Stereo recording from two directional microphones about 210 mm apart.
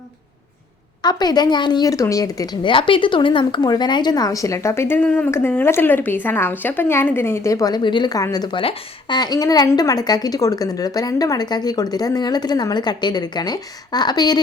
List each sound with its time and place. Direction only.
1.0 s a woman's voice: 20° left (ahead or behind)